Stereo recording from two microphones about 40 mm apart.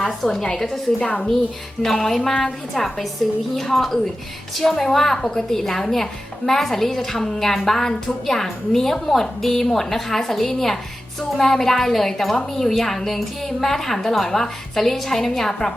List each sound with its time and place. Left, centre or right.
0.1 s a woman's voice: centre
0.9 s a woman's voice: left
1.8 s a woman's voice: centre